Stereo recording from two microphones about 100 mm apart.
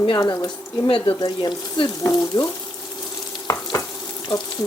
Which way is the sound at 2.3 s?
45° left (ahead or behind).